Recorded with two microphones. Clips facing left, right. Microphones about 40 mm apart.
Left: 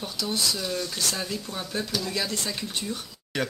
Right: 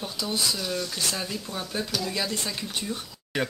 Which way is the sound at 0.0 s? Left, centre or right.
Centre.